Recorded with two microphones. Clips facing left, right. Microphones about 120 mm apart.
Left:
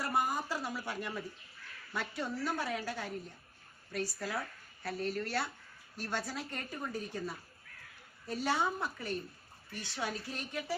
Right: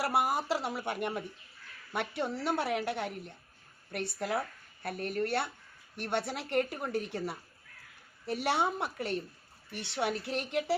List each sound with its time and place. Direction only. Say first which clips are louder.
0.0 s speech: right 4 dB; 75° right (ahead or behind)